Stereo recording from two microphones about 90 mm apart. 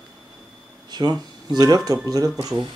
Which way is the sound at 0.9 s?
50° right (ahead or behind).